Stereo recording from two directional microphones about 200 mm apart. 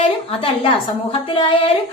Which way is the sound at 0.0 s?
25° left (ahead or behind).